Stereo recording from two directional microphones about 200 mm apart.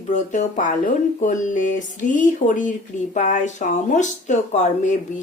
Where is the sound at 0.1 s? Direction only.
35° left (ahead or behind).